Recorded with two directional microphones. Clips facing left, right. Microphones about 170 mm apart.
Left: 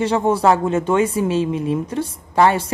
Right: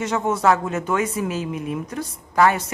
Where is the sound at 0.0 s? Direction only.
30° left (ahead or behind).